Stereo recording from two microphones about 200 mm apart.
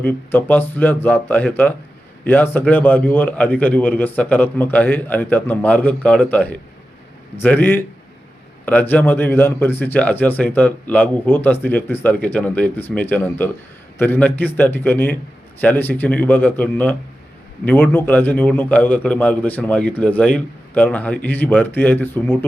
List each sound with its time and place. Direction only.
0.0 s a man's voice: 10° left (ahead or behind)